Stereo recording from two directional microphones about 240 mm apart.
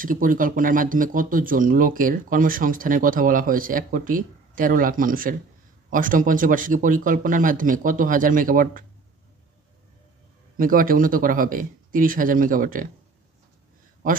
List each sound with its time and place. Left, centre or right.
0.0 s speech: right
10.6 s speech: right